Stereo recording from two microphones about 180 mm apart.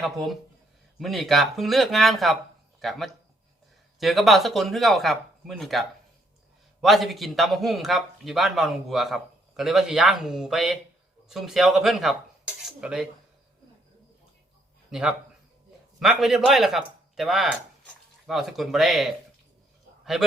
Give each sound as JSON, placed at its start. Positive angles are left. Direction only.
{"t": 0.0, "sound": "speech", "side_deg": 0}
{"t": 6.8, "sound": "speech", "side_deg": 0}
{"t": 12.6, "sound": "cutlery", "side_deg": -5}
{"t": 14.8, "sound": "a man's voice", "side_deg": -5}